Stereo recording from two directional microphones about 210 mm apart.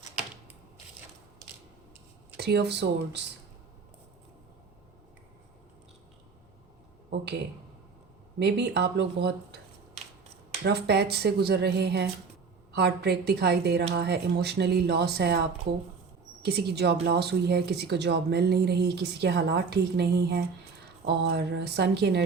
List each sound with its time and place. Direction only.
2.4 s a woman's voice: 50° right (ahead or behind)
8.4 s a woman's voice: 55° right (ahead or behind)
10.6 s a woman's voice: 50° right (ahead or behind)